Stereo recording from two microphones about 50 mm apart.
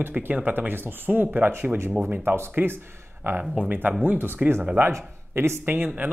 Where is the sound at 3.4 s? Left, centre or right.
Right.